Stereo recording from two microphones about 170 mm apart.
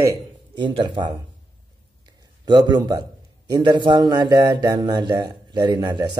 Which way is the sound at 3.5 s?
25° right (ahead or behind).